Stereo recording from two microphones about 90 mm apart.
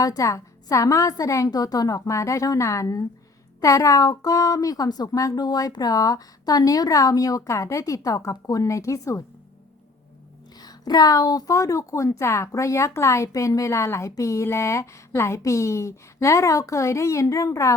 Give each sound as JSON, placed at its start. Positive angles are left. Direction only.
{"t": 0.0, "sound": "a woman's voice", "side_deg": 40}
{"t": 10.6, "sound": "a woman's voice", "side_deg": 50}